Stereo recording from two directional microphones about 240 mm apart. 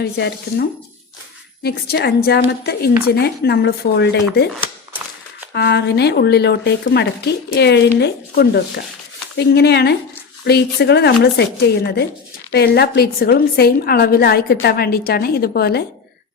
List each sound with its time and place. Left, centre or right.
0.0 s speech: left
1.6 s speech: left
5.5 s a woman's voice: left